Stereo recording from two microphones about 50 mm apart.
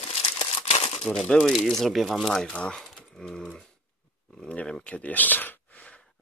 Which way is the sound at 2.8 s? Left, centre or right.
Centre.